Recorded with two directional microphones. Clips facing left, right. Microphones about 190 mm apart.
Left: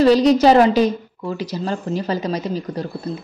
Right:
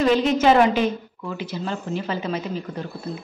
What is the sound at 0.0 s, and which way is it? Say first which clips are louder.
A woman's voice: left 5 dB; 35° left (ahead or behind).